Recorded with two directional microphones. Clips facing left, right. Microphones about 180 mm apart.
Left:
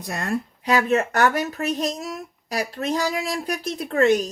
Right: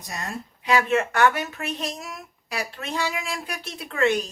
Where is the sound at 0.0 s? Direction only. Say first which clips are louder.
Left 7 dB; 60° left (ahead or behind).